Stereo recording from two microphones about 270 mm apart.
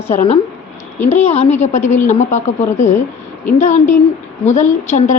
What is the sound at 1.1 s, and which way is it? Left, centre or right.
A woman's voice, left.